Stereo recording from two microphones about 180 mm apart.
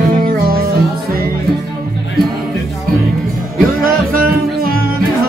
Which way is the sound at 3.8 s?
50° right (ahead or behind).